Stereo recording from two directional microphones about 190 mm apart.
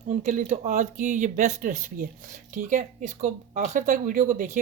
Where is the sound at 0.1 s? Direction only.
40° right (ahead or behind).